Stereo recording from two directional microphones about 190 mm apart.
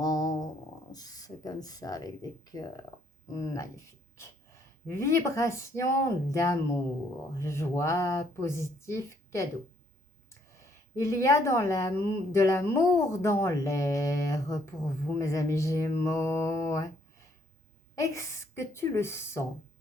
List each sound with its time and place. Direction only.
0.0 s a sound: 20° left (ahead or behind)
0.9 s a woman's voice: 20° left (ahead or behind)
4.9 s a woman's voice: 15° left (ahead or behind)
10.9 s a woman's voice: 15° left (ahead or behind)
17.9 s a woman's voice: 15° left (ahead or behind)